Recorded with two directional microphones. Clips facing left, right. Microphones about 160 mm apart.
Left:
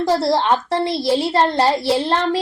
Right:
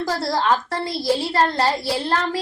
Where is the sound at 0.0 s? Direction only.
25° left (ahead or behind).